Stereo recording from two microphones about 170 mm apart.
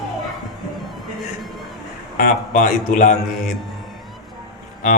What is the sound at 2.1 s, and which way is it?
Speech, 55° left (ahead or behind).